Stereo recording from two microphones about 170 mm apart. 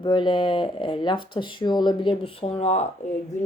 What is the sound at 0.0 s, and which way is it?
A woman's voice, 30° left (ahead or behind).